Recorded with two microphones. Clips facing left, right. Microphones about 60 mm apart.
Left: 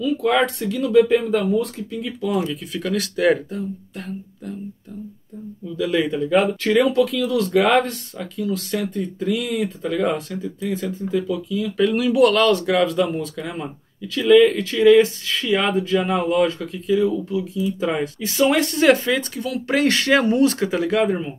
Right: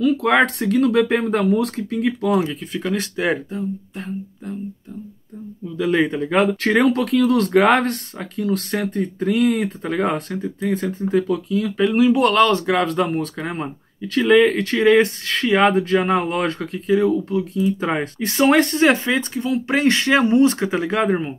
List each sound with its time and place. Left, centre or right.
0.0 s speech: right
2.4 s speech: right
5.8 s speech: right
11.8 s speech: right
12.8 s speech: right
17.6 s speech: right